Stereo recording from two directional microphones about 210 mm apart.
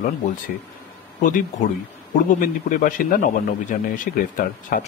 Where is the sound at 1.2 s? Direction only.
35° left (ahead or behind).